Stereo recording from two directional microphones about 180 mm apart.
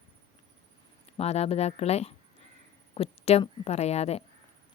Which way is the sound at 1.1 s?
35° left (ahead or behind).